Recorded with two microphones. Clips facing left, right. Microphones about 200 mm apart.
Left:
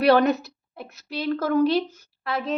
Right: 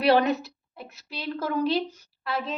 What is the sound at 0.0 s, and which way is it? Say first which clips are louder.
A woman's voice: left 3 dB; 45° left (ahead or behind).